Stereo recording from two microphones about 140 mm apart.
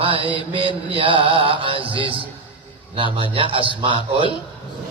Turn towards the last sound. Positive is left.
turn(degrees=-40)  # may be behind; listen again after turning